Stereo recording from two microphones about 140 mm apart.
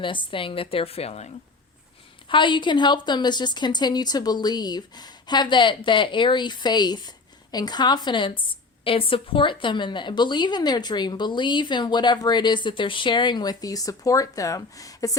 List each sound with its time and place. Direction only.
0.0 s a woman's voice: 35° left (ahead or behind)
2.3 s a woman's voice: 35° left (ahead or behind)